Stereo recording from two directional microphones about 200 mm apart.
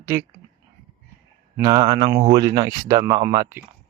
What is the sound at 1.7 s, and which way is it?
Speech, 30° right (ahead or behind).